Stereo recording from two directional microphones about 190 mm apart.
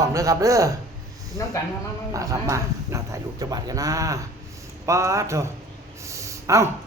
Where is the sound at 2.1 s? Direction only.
15° right (ahead or behind).